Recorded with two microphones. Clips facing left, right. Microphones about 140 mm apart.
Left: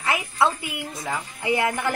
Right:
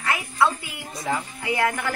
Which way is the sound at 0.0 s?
20° left (ahead or behind).